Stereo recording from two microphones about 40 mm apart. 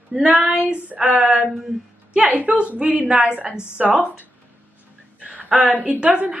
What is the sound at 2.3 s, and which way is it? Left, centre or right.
A woman's voice, right.